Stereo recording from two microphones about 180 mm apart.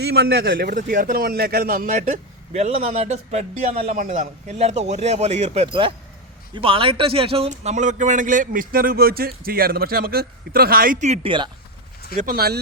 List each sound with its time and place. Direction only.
0.0 s speech: 60° right (ahead or behind)
11.0 s speech: 35° right (ahead or behind)
12.1 s speech: 50° right (ahead or behind)